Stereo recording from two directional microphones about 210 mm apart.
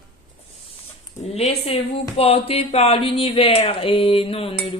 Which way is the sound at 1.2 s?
30° left (ahead or behind).